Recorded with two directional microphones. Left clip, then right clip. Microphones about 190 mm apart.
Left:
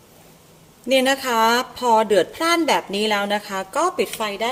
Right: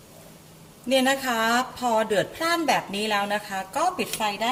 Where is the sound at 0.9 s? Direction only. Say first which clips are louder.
Left 4 dB; 50° left (ahead or behind).